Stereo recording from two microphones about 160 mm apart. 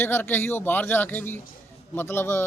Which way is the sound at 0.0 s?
15° left (ahead or behind).